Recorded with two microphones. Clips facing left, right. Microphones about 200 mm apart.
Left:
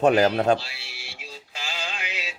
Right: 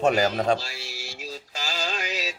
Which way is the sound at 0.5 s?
40° right (ahead or behind).